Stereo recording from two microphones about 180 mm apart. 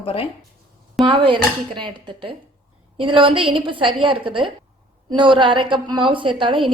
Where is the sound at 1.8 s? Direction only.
25° right (ahead or behind).